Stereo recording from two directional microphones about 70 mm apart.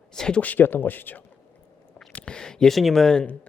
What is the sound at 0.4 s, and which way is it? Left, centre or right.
Speech, left.